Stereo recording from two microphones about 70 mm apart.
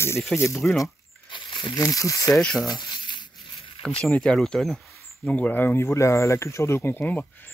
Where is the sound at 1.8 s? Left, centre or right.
Left.